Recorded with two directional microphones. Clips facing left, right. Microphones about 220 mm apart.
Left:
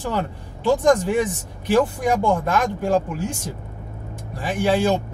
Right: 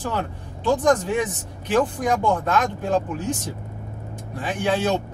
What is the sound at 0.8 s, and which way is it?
Speech, 10° left (ahead or behind).